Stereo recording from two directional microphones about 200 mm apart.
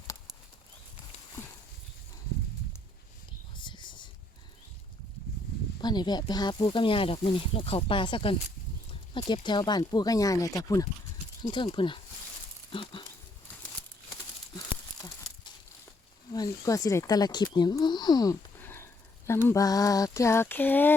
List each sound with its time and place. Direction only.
3.5 s a sound: 25° left (ahead or behind)
5.8 s speech: 20° left (ahead or behind)
16.3 s speech: 15° left (ahead or behind)